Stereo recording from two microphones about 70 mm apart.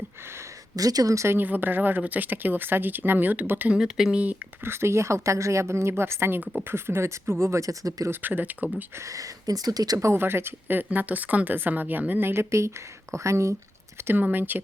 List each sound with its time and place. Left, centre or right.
0.8 s speech: right
1.4 s speech: right
3.7 s speech: centre
4.6 s a woman's voice: right
8.1 s speech: right
9.0 s speech: right
10.0 s a woman's voice: right
14.1 s speech: right